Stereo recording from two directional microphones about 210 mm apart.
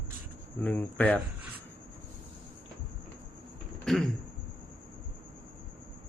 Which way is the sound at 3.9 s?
Centre (ahead or behind).